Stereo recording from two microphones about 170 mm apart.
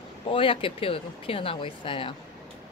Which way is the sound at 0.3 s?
30° left (ahead or behind).